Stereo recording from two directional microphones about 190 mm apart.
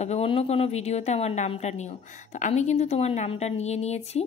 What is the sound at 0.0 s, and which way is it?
Speech, 35° left (ahead or behind).